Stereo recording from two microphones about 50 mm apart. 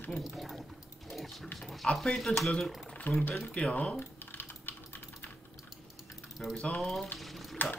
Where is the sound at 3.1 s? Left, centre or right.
Left.